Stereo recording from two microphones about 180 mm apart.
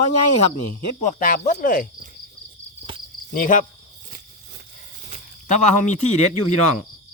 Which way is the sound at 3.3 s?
50° left (ahead or behind).